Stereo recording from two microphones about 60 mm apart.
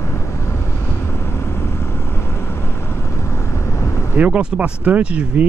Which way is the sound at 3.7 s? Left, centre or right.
Left.